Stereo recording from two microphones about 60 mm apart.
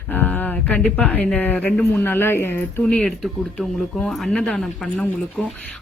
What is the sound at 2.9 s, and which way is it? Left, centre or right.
Speech, centre.